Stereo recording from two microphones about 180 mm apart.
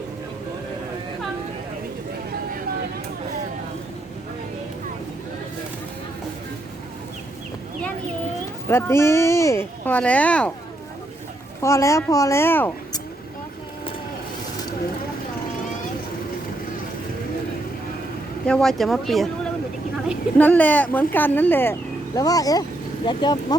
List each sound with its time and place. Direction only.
8.7 s speech: 15° left (ahead or behind)
11.6 s speech: 15° left (ahead or behind)
18.4 s speech: 5° left (ahead or behind)
20.4 s speech: 10° left (ahead or behind); by 23.6 s 25° left (ahead or behind)